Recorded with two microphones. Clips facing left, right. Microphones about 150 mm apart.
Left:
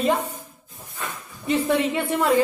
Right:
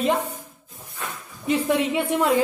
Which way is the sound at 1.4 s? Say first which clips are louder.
Even; 5° right (ahead or behind).